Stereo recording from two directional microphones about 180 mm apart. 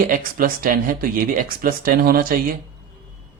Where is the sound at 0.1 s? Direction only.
50° right (ahead or behind).